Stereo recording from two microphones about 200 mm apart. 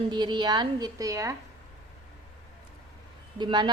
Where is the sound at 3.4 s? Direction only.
25° right (ahead or behind).